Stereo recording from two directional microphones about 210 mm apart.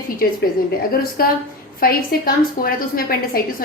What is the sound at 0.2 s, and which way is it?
A woman's voice, 45° left (ahead or behind).